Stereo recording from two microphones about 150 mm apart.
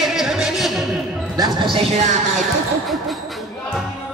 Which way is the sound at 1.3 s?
30° right (ahead or behind).